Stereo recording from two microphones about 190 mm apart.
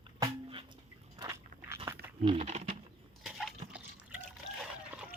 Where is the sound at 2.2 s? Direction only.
30° right (ahead or behind).